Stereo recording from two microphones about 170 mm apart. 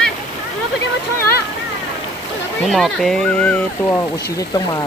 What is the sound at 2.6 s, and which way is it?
Speech, centre (ahead or behind).